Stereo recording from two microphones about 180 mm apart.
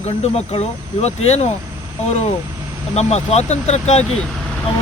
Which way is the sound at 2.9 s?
35° left (ahead or behind).